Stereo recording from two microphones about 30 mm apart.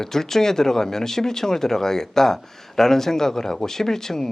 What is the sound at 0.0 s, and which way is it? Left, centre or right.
Speech, centre.